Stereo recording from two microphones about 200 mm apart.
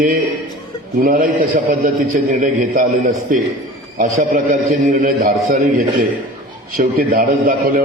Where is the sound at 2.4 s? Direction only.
40° right (ahead or behind).